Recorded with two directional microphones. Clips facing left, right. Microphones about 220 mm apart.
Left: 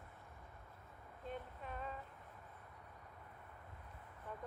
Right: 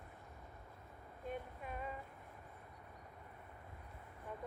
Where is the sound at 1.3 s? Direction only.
10° right (ahead or behind).